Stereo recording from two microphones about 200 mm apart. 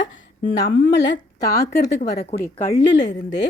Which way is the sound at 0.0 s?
60° left (ahead or behind).